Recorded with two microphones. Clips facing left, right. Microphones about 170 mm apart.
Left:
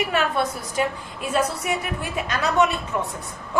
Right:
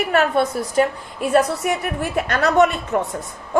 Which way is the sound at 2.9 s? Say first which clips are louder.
Right 5 dB; 50° right (ahead or behind).